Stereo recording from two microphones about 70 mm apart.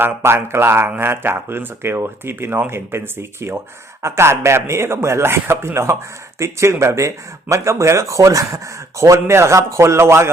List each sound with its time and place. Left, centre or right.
0.0 s speech: right